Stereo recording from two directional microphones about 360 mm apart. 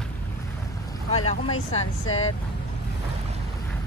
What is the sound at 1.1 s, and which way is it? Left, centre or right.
Speech, centre.